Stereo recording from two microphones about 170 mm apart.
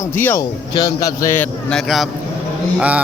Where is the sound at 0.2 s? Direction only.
10° left (ahead or behind).